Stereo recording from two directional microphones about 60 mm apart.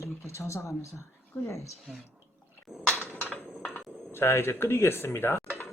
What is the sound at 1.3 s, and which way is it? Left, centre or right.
Speech, centre.